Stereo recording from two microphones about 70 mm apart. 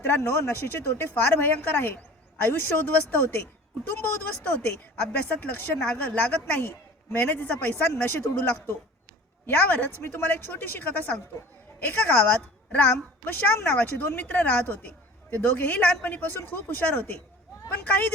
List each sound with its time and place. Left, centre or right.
0.0 s a woman's voice: left